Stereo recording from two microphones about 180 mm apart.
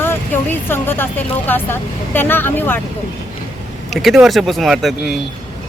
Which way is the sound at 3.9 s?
Centre (ahead or behind).